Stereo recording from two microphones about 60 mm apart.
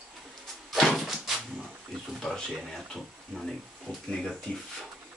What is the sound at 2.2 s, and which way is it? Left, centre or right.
Speech, centre.